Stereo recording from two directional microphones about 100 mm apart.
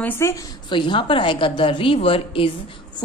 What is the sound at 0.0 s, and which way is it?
Speech, 25° left (ahead or behind).